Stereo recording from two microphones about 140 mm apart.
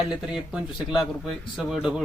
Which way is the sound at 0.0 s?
5° right (ahead or behind).